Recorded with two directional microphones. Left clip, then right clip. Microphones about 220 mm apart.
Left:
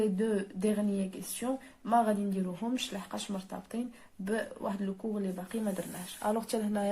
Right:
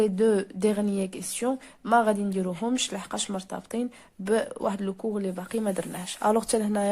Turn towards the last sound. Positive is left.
turn(degrees=-30)  # may be behind; listen again after turning